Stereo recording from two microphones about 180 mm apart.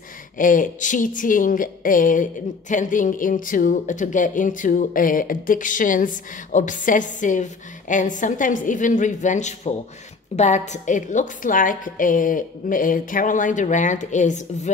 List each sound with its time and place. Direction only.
0.4 s a woman's voice: 45° left (ahead or behind)